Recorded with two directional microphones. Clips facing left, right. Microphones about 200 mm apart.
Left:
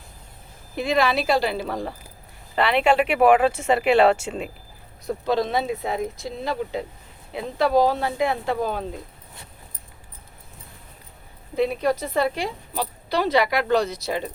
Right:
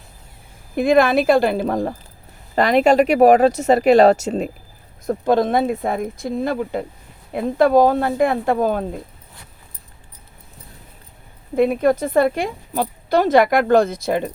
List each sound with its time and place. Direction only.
0.8 s a woman's voice: 50° right (ahead or behind)
5.0 s a woman's voice: 50° right (ahead or behind)
11.5 s a woman's voice: 50° right (ahead or behind)